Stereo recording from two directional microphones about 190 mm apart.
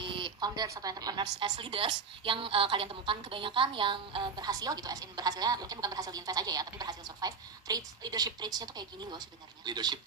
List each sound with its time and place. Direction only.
0.0 s a woman's voice: 25° right (ahead or behind)